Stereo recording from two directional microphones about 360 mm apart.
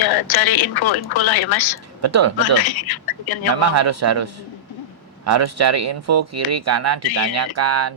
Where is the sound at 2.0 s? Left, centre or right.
Right.